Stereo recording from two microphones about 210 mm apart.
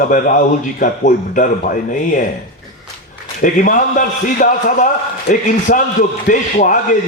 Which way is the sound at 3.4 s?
40° left (ahead or behind).